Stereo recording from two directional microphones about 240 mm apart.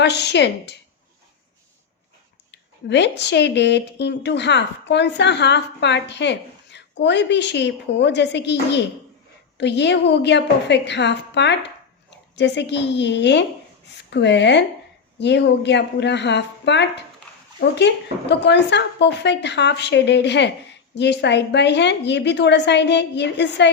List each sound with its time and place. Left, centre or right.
0.0 s speech: left
2.5 s speech: left